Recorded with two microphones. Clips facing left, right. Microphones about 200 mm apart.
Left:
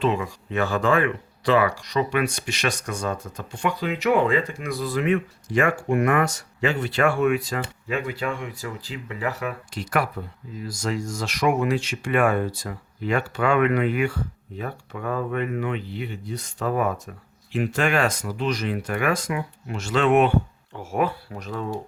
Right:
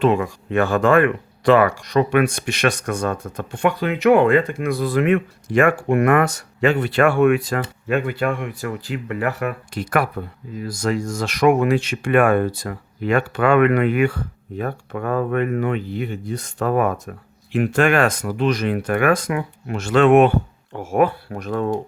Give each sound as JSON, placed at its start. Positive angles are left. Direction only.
{"t": 0.0, "sound": "speech", "side_deg": -55}